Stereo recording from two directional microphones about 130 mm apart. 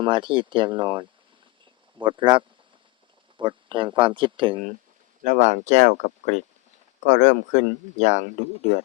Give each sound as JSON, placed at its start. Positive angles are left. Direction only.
{"t": 0.0, "sound": "speech", "side_deg": -40}
{"t": 5.2, "sound": "speech", "side_deg": -80}